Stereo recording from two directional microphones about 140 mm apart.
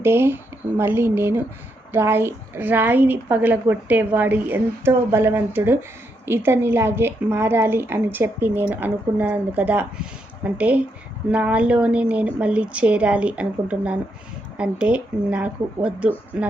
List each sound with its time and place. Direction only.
0.0 s a woman's voice: 15° right (ahead or behind)